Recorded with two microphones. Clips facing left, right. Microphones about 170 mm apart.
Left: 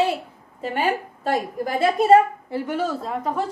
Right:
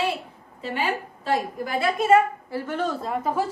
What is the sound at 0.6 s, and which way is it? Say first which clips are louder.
A woman's voice: left 4 dB; 45° left (ahead or behind).